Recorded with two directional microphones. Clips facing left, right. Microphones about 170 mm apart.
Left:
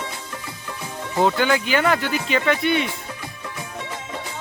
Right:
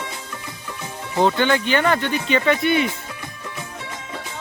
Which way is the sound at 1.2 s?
5° left (ahead or behind).